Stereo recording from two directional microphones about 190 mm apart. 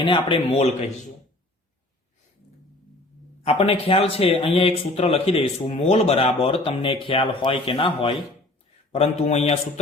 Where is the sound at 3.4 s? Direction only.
30° left (ahead or behind).